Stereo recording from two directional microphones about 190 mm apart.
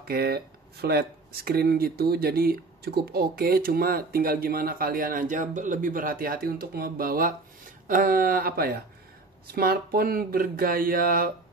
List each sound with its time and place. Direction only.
0.0 s speech: 55° right (ahead or behind)